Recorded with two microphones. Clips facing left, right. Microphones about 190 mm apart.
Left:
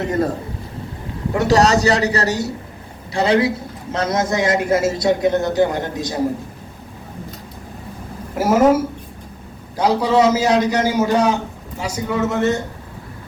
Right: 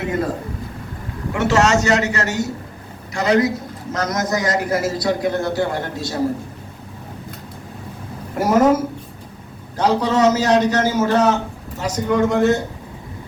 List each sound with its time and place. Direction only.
1.3 s a man's voice: 35° left (ahead or behind); by 6.1 s 20° left (ahead or behind)
8.4 s a man's voice: 5° left (ahead or behind)